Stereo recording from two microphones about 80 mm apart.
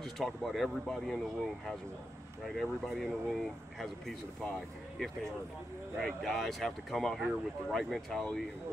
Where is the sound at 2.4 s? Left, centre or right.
Centre.